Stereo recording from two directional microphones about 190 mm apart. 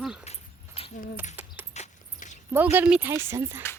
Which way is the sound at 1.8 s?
40° left (ahead or behind).